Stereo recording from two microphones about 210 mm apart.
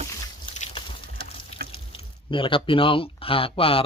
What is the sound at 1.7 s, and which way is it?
Speech, 25° left (ahead or behind).